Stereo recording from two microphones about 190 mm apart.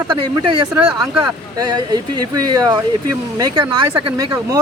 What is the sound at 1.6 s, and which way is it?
Speech, 20° right (ahead or behind).